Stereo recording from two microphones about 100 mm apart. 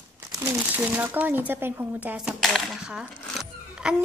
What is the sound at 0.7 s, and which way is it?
Speech, 20° right (ahead or behind).